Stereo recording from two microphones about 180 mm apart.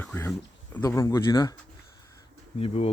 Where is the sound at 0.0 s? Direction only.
10° left (ahead or behind).